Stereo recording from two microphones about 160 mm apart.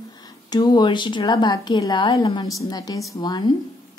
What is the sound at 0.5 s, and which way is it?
A woman's voice, 25° left (ahead or behind).